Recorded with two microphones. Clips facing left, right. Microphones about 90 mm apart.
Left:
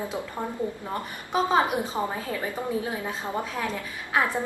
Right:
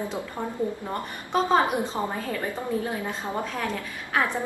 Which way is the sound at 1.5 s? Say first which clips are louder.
Right 2 dB; 10° left (ahead or behind).